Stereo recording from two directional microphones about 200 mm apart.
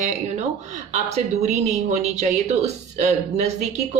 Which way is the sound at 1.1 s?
35° right (ahead or behind).